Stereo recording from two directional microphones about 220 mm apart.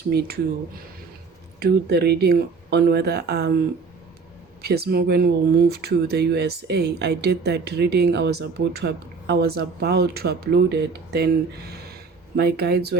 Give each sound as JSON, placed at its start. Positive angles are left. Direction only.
{"t": 0.1, "sound": "speech", "side_deg": -45}
{"t": 1.5, "sound": "speech", "side_deg": -45}
{"t": 4.6, "sound": "speech", "side_deg": -45}
{"t": 12.4, "sound": "speech", "side_deg": -45}